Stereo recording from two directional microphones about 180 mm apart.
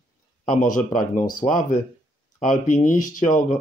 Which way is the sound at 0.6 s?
45° left (ahead or behind).